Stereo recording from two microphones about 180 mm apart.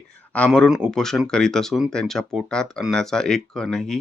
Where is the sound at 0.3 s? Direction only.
5° left (ahead or behind).